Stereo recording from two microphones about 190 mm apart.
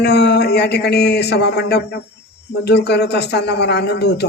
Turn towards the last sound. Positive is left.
turn(degrees=60)  # may be behind; listen again after turning